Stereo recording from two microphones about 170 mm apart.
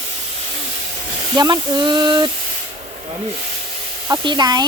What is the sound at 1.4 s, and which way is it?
Speech, 25° right (ahead or behind).